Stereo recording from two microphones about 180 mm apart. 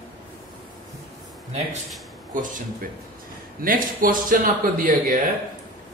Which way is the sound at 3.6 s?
50° right (ahead or behind).